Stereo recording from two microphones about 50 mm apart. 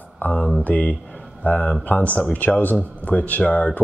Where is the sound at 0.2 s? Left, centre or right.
Left.